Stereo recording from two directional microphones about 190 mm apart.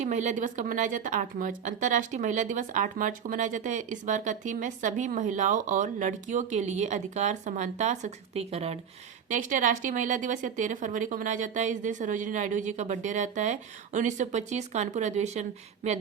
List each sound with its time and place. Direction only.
0.0 s a woman's voice: 40° right (ahead or behind)
9.3 s a woman's voice: 45° right (ahead or behind)